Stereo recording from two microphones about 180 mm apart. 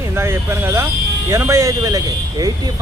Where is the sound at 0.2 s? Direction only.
15° right (ahead or behind).